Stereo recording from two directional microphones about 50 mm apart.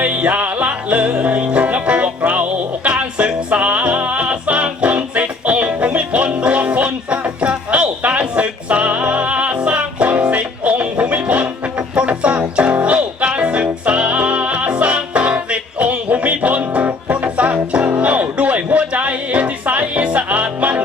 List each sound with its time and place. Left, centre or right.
0.0 s music: right